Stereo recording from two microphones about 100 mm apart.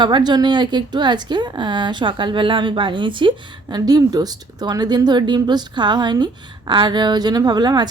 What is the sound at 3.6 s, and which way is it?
Speech, 40° right (ahead or behind).